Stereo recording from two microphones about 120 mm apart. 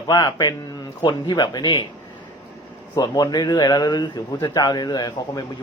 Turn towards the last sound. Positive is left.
turn(degrees=35)  # may be behind; listen again after turning